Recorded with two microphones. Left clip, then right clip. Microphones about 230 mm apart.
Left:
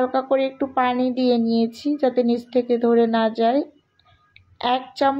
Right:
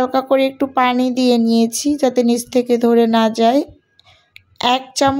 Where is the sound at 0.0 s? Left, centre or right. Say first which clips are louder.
Right 5 dB; right.